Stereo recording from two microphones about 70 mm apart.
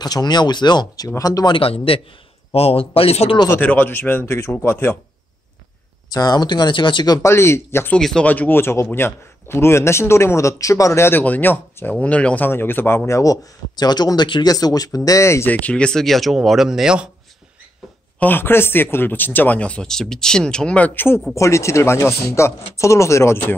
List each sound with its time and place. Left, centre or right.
0.0 s speech: left
1.0 s speech: left
3.5 s speech: left
6.1 s speech: left
7.2 s speech: left
8.2 s speech: left
11.1 s speech: left
12.4 s speech: left
15.0 s speech: left
15.4 s speech: left; by 17.1 s centre
18.2 s speech: left
21.4 s speech: left